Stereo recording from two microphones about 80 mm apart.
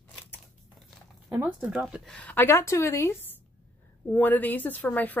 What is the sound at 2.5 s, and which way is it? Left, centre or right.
Speech, left.